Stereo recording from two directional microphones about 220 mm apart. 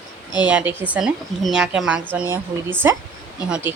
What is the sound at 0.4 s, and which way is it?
A woman's voice, 5° right (ahead or behind).